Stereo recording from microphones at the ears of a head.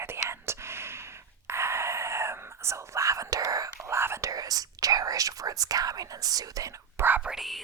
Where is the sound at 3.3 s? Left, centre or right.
Right.